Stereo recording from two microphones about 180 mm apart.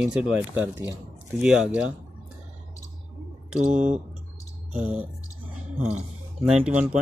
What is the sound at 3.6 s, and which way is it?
Speech, 40° right (ahead or behind).